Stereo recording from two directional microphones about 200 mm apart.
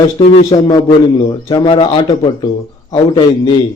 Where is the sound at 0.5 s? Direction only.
20° left (ahead or behind).